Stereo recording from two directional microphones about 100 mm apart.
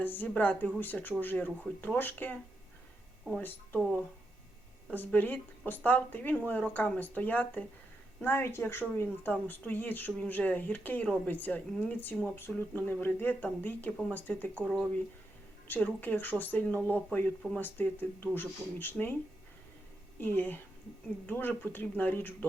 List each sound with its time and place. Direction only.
0.0 s speech: 15° left (ahead or behind)
4.9 s speech: 20° left (ahead or behind)
15.6 s speech: 15° left (ahead or behind)
20.1 s speech: 20° left (ahead or behind)